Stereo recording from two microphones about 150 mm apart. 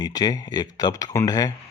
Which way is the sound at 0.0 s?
25° left (ahead or behind).